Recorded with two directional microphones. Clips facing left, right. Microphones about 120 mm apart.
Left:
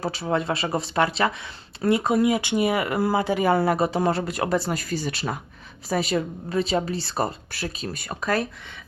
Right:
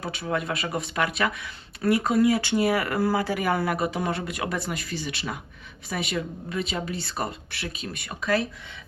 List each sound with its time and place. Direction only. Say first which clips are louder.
0.0 s speech: left 4 dB; 30° left (ahead or behind)